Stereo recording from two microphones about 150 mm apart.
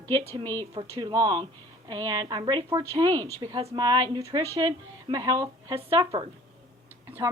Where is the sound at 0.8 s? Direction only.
25° right (ahead or behind).